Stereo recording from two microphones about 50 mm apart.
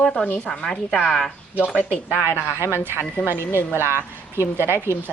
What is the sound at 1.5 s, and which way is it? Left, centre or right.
Speech, left.